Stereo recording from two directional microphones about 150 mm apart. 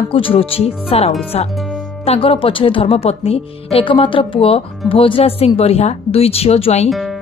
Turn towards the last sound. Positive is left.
turn(degrees=0)  # may be behind; listen again after turning